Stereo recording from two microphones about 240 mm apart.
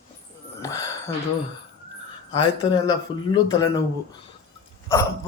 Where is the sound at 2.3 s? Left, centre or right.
Centre.